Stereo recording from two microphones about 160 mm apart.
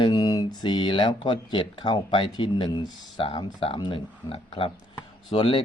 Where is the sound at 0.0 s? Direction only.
25° left (ahead or behind).